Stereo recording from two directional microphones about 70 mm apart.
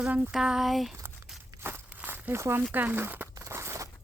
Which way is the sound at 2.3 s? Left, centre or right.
Right.